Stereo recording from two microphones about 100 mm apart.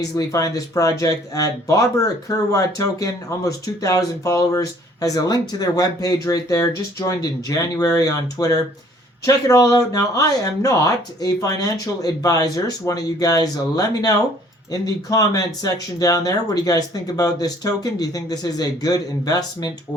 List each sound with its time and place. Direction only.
0.3 s speech: 35° left (ahead or behind)